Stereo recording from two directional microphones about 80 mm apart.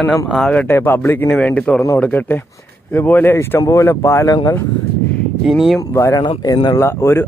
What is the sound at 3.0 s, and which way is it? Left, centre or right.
Speech, left.